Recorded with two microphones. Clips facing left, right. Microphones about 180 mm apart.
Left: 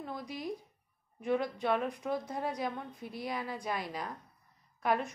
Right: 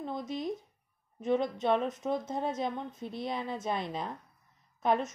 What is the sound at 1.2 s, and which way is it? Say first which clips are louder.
Speech: right 3 dB; 20° right (ahead or behind).